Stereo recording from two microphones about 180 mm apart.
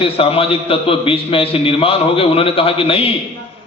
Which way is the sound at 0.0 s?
30° left (ahead or behind).